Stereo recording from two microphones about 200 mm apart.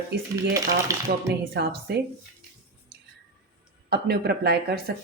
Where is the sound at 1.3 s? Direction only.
55° right (ahead or behind).